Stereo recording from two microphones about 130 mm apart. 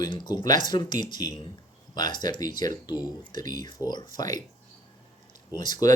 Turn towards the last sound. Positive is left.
turn(degrees=30)  # may be behind; listen again after turning